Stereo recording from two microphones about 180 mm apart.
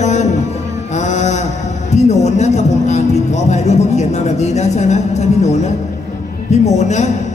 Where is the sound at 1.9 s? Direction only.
40° left (ahead or behind).